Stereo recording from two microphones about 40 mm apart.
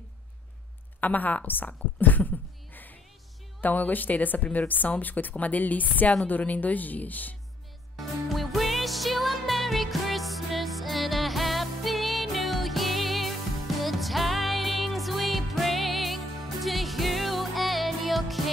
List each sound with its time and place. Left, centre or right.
1.0 s speech: left
7.9 s music: centre